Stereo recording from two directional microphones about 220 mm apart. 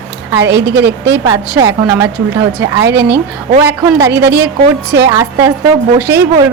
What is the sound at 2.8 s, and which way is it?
Speech, 50° right (ahead or behind).